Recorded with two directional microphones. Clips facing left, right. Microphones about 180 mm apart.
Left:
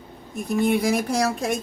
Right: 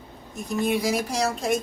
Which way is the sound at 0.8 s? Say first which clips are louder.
Left 3 dB; 55° left (ahead or behind).